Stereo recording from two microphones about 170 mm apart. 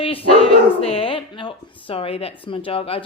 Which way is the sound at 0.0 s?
35° left (ahead or behind).